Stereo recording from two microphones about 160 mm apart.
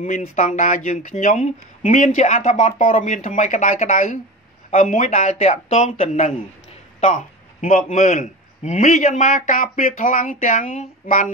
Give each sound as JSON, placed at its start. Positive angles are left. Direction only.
{"t": 0.0, "sound": "a man's voice", "side_deg": 50}